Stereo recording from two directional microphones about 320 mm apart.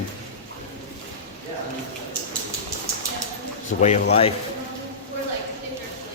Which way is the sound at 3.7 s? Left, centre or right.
Left.